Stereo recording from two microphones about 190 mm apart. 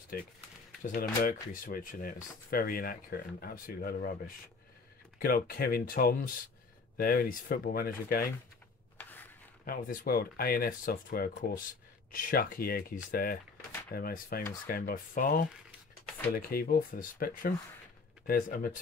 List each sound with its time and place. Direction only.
0.1 s speech: 50° left (ahead or behind)
5.2 s speech: 50° left (ahead or behind)
8.9 s a sound: 10° left (ahead or behind)
9.7 s speech: 50° left (ahead or behind)